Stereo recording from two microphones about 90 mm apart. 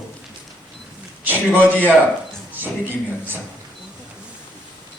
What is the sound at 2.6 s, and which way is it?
Speech, 20° right (ahead or behind).